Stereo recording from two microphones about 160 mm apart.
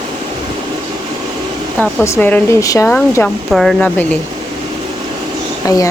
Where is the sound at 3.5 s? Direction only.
Centre (ahead or behind).